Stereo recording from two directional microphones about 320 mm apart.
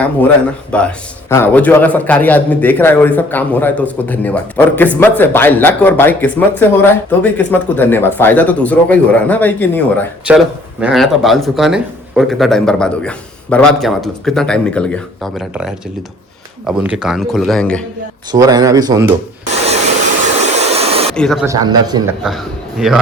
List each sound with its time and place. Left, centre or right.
0.7 s speech: centre
18.3 s a man's voice: centre
20.2 s a sound: right
21.2 s a man's voice: centre
22.2 s speech: centre